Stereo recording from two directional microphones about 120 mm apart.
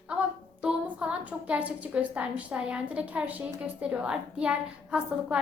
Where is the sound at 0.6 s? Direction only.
10° right (ahead or behind).